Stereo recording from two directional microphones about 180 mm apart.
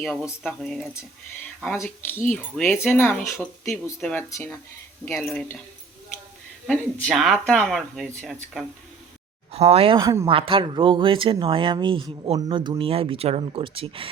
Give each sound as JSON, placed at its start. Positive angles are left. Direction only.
{"t": 0.0, "sound": "speech", "side_deg": 5}
{"t": 7.1, "sound": "speech", "side_deg": 0}
{"t": 9.5, "sound": "speech", "side_deg": -35}